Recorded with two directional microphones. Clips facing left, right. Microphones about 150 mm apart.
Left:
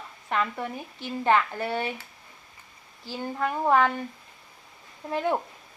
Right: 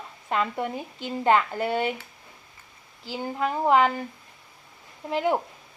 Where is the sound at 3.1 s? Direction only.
15° right (ahead or behind).